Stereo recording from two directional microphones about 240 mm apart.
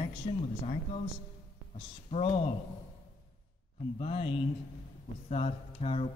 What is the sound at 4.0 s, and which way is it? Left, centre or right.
Speech, left.